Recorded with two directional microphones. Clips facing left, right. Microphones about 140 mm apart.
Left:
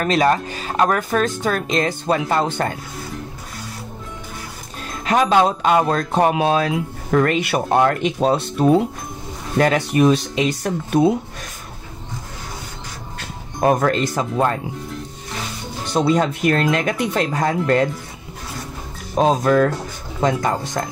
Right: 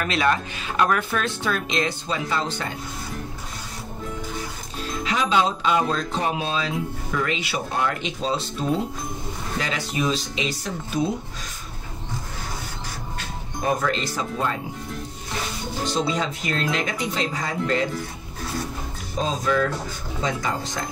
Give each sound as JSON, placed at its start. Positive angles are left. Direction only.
{"t": 0.0, "sound": "speech", "side_deg": 40}
{"t": 5.0, "sound": "speech", "side_deg": 50}
{"t": 13.6, "sound": "speech", "side_deg": 55}
{"t": 15.9, "sound": "speech", "side_deg": 55}
{"t": 19.1, "sound": "speech", "side_deg": 55}